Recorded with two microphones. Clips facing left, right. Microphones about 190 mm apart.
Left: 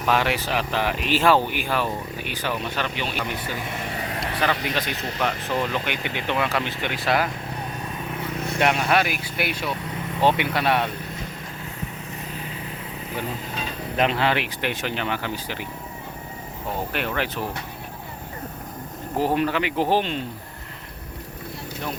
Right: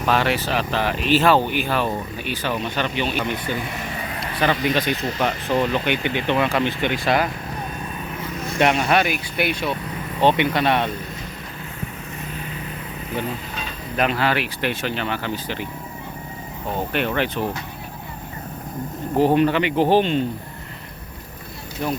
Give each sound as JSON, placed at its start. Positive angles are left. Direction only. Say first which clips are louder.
{"t": 0.0, "sound": "speech", "louder": "right 2 dB", "side_deg": 10}
{"t": 4.6, "sound": "speech", "louder": "right 6 dB", "side_deg": 0}
{"t": 8.5, "sound": "speech", "louder": "right 3 dB", "side_deg": 5}
{"t": 13.9, "sound": "speech", "louder": "right 1 dB", "side_deg": 25}
{"t": 16.9, "sound": "speech", "louder": "right 7 dB", "side_deg": 5}
{"t": 19.2, "sound": "speech", "louder": "right 5 dB", "side_deg": 0}